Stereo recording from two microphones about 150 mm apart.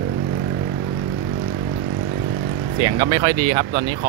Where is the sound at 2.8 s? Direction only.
25° right (ahead or behind).